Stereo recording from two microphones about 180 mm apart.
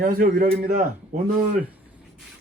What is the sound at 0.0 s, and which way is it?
A man's voice, 55° right (ahead or behind).